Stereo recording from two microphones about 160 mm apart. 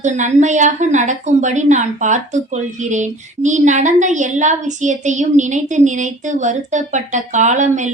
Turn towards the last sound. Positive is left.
turn(degrees=-50)  # may be behind; listen again after turning